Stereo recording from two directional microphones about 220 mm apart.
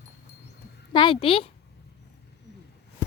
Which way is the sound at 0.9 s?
25° left (ahead or behind).